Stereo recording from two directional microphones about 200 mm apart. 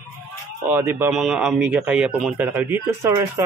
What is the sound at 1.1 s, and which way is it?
Speech, centre (ahead or behind).